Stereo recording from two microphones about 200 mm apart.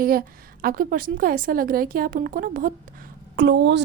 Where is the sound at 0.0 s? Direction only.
45° right (ahead or behind).